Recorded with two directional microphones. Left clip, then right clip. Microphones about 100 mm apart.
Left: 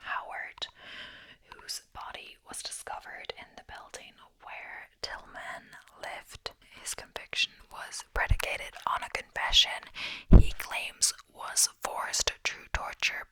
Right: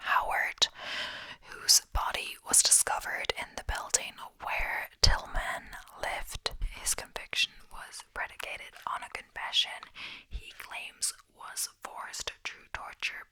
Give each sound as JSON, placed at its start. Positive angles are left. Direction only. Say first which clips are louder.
{"t": 0.0, "sound": "whispering", "louder": "right 8 dB", "side_deg": -25}
{"t": 7.7, "sound": "whispering", "louder": "left 5 dB", "side_deg": 15}